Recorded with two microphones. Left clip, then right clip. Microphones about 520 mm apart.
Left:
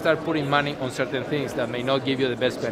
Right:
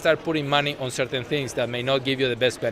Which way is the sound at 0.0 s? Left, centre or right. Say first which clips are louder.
Right 1 dB; right.